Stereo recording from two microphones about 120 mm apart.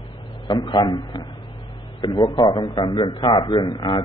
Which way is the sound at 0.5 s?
40° left (ahead or behind).